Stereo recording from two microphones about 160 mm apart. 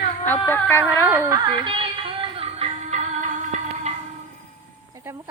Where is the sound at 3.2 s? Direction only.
50° right (ahead or behind).